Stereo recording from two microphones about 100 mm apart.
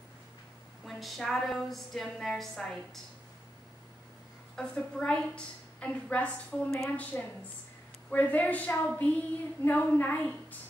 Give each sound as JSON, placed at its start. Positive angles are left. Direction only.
{"t": 0.8, "sound": "a woman's voice", "side_deg": 0}
{"t": 4.6, "sound": "a woman's voice", "side_deg": 10}